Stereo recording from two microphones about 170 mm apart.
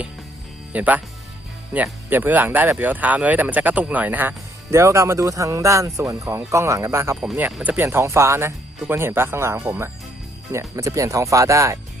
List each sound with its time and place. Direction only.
0.7 s speech: 10° right (ahead or behind)